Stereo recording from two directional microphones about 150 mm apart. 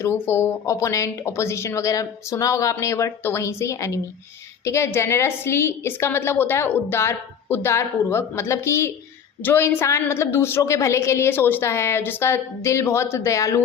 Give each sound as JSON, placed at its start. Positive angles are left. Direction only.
{"t": 0.0, "sound": "a woman's voice", "side_deg": 15}